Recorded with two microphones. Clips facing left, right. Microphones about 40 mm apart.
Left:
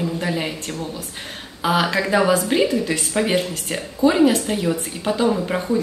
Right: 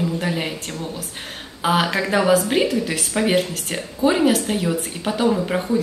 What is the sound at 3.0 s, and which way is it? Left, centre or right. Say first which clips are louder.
A woman's voice: right 1 dB; centre.